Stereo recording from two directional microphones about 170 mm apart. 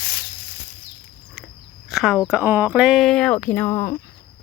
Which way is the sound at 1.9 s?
Centre (ahead or behind).